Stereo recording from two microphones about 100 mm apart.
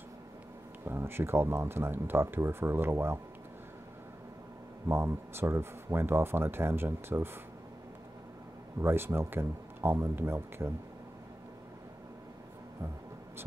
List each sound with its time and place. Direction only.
0.8 s speech: 25° right (ahead or behind)
4.8 s speech: 25° right (ahead or behind)
8.8 s speech: 25° right (ahead or behind)